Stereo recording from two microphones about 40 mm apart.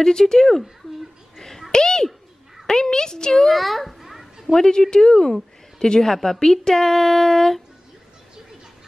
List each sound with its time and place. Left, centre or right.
0.0 s speech: centre
1.7 s speech: centre
3.4 s children playing: centre
4.6 s speech: centre